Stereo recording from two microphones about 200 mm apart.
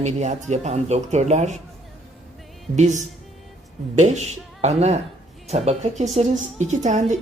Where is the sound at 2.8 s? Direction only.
35° right (ahead or behind).